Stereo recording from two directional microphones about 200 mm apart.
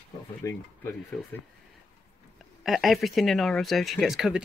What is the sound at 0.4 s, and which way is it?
Speech, 15° left (ahead or behind).